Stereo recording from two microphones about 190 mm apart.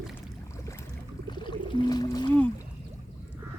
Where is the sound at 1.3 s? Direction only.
25° left (ahead or behind).